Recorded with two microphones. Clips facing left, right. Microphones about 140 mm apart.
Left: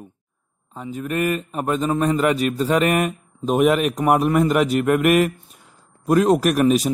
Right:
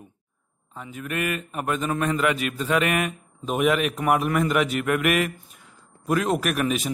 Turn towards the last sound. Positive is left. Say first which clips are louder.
# left 8 dB
turn(degrees=40)  # may be behind; listen again after turning